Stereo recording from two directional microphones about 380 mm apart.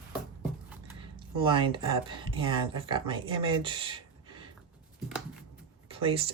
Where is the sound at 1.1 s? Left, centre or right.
Centre.